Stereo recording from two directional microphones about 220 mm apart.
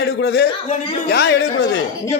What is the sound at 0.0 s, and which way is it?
Speech, 50° left (ahead or behind).